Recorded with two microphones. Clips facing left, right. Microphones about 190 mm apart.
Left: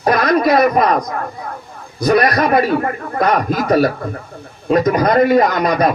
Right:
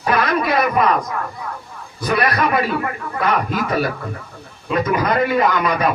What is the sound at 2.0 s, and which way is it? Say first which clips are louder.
A man's voice: left 5 dB; 40° left (ahead or behind).